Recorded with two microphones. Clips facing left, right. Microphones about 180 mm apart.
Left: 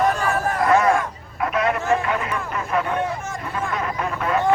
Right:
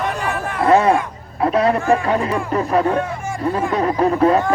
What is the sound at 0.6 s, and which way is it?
Chatter, 30° right (ahead or behind).